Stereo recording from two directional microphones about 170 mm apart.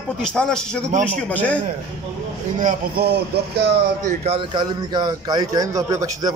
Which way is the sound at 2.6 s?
50° right (ahead or behind).